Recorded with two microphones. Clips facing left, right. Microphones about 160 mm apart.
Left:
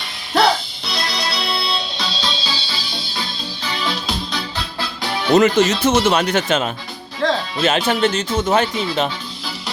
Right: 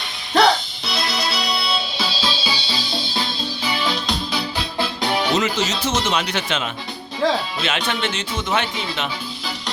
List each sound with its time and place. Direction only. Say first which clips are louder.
0.3 s music: even; centre (ahead or behind)
3.8 s music: even; centre (ahead or behind)
5.3 s speech: left 8 dB; 55° left (ahead or behind)
7.2 s speech: even; 5° right (ahead or behind)
7.6 s speech: left 7 dB; 40° left (ahead or behind)